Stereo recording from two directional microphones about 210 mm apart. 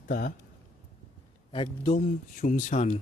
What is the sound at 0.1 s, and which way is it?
Speech, 45° left (ahead or behind).